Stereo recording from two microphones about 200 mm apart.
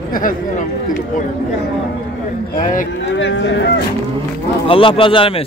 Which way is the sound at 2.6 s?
40° left (ahead or behind).